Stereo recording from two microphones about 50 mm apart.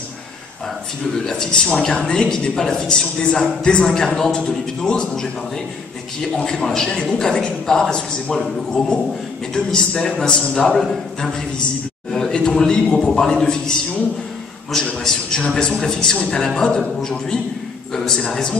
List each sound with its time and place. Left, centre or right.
1.1 s a woman's voice: centre
6.3 s a woman's voice: centre
10.7 s a man's voice: centre
12.1 s a sound: centre
12.4 s a woman's voice: centre
12.9 s a man's voice: left
13.2 s a woman's voice: centre
15.0 s a woman's voice: centre